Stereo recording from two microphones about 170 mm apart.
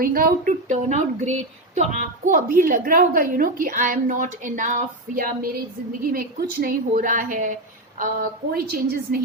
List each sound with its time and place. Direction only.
0.0 s a woman's voice: 55° right (ahead or behind)